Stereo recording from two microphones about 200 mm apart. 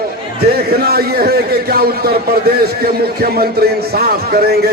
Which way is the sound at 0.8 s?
50° right (ahead or behind).